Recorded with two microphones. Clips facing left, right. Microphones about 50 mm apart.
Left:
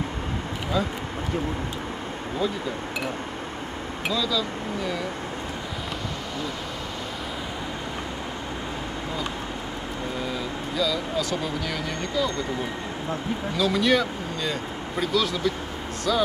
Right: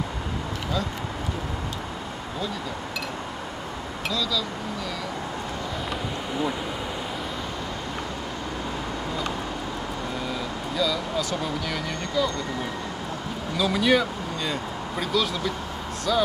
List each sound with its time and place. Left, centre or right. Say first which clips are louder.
4.1 s speech: left 2 dB; centre
10.8 s a sound: even; centre
12.2 s speech: right 1 dB; centre
13.6 s speech: even; centre